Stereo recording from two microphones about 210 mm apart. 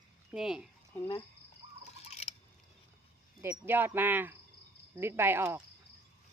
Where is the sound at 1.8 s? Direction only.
30° left (ahead or behind).